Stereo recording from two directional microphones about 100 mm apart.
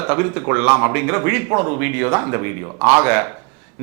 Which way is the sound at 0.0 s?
15° right (ahead or behind).